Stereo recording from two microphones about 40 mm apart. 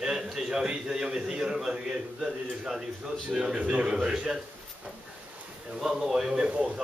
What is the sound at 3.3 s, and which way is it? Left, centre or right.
Speech, centre.